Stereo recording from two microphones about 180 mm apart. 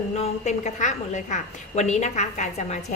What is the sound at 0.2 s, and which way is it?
A woman's voice, 40° left (ahead or behind).